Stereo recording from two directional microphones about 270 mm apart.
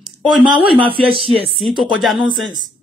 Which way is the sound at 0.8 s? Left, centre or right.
Centre.